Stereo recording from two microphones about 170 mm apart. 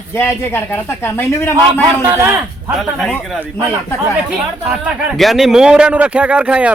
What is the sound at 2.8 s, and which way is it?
Speech, centre (ahead or behind).